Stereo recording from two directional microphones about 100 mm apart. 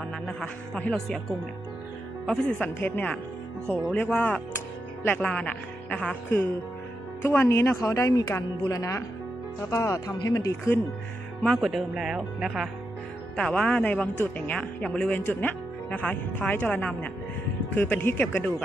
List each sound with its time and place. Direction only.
0.3 s speech: 10° left (ahead or behind)
2.2 s speech: 10° left (ahead or behind)
7.2 s speech: 25° left (ahead or behind)
11.4 s speech: centre (ahead or behind)
13.4 s speech: 10° left (ahead or behind)